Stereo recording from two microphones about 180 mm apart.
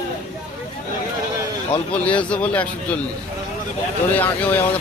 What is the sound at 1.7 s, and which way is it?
Speech, 5° left (ahead or behind).